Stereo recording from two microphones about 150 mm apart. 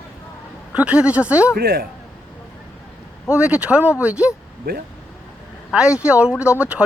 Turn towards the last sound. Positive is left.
turn(degrees=-10)  # may be behind; listen again after turning